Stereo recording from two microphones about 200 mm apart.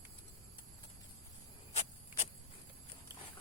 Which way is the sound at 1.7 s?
30° left (ahead or behind).